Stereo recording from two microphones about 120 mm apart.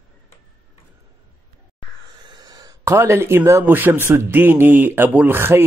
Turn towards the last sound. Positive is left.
turn(degrees=-20)  # may be behind; listen again after turning